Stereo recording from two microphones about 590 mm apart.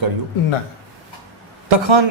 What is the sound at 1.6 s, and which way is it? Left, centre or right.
Speech, right.